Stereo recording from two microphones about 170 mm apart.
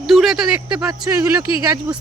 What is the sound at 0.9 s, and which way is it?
Speech, 20° right (ahead or behind).